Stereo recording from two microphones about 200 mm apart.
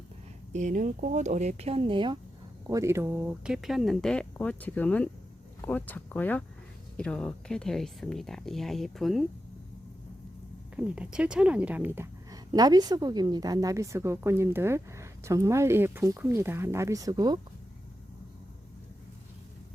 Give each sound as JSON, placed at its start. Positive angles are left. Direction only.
{"t": 0.5, "sound": "speech", "side_deg": -40}
{"t": 10.8, "sound": "a woman's voice", "side_deg": -5}